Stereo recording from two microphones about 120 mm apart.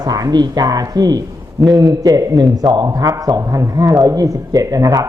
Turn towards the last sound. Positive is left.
turn(degrees=-30)  # may be behind; listen again after turning